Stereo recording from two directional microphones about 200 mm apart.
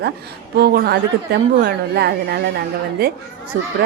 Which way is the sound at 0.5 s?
50° right (ahead or behind).